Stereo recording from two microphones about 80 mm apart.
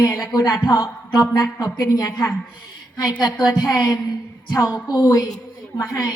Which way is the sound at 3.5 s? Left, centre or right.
Left.